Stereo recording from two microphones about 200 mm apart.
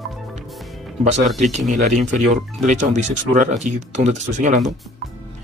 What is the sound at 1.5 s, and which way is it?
Speech, 35° right (ahead or behind).